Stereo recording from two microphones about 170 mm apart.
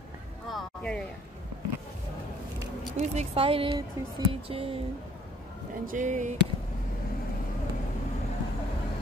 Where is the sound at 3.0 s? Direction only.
35° right (ahead or behind).